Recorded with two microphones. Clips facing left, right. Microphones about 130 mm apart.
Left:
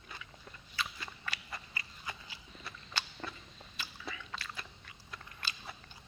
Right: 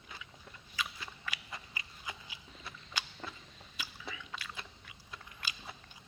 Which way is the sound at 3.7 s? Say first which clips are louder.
Left 1 dB; 5° right (ahead or behind).